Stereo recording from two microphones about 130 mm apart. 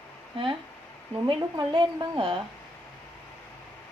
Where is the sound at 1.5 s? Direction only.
30° right (ahead or behind).